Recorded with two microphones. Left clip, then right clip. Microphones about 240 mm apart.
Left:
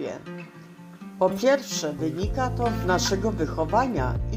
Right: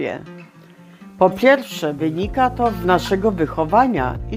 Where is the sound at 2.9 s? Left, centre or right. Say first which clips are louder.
Right 6 dB; right.